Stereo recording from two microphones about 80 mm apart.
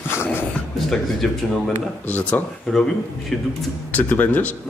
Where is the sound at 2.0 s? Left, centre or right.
Centre.